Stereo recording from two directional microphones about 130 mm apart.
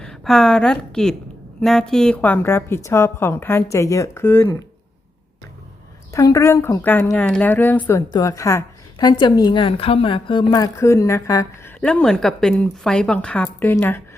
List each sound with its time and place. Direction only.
0.0 s a woman's voice: 5° left (ahead or behind)
6.1 s a woman's voice: 25° left (ahead or behind)
11.8 s a woman's voice: 5° left (ahead or behind)